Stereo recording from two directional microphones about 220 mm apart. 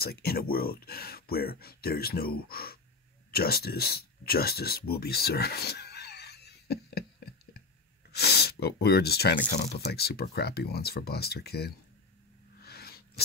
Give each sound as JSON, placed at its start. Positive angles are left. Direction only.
{"t": 0.0, "sound": "speech", "side_deg": 45}
{"t": 8.1, "sound": "speech", "side_deg": 45}
{"t": 12.6, "sound": "sneeze", "side_deg": 45}